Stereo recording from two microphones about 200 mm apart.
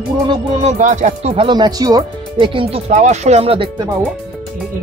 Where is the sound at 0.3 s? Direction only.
35° right (ahead or behind).